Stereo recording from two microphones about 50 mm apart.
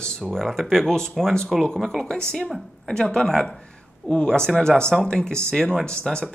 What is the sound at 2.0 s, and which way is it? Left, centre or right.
A woman's voice, centre.